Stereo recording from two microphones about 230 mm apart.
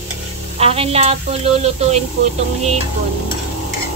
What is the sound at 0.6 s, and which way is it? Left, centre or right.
Speech, right.